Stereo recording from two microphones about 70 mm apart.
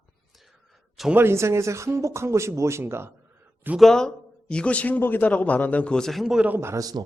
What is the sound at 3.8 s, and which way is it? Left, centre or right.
A man's voice, centre.